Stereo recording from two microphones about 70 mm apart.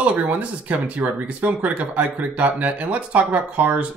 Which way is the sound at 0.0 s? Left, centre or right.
Centre.